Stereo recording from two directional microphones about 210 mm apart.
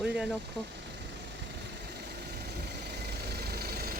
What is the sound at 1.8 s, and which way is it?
Vehicle, 50° right (ahead or behind).